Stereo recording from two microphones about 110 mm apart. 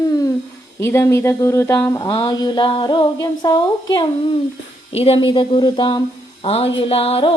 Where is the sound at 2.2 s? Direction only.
40° left (ahead or behind).